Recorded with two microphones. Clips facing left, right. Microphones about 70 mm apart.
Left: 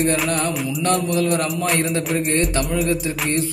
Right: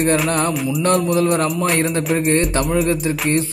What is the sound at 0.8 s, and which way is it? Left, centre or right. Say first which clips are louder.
Mantra: right 3 dB; right.